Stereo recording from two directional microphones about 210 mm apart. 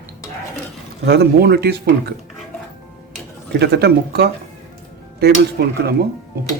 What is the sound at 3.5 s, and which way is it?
Speech, 50° right (ahead or behind).